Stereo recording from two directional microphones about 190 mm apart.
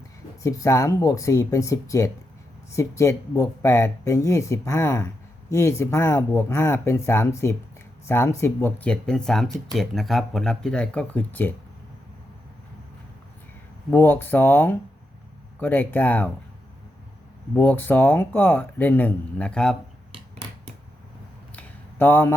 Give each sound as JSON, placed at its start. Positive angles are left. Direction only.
{"t": 0.4, "sound": "speech", "side_deg": 15}
{"t": 13.9, "sound": "speech", "side_deg": 10}
{"t": 17.5, "sound": "speech", "side_deg": 10}
{"t": 21.5, "sound": "a sound", "side_deg": 10}